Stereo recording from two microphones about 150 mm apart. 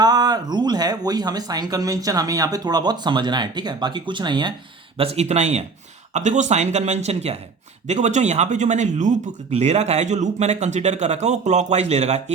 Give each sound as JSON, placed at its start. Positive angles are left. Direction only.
{"t": 0.0, "sound": "speech", "side_deg": -25}
{"t": 4.9, "sound": "speech", "side_deg": -45}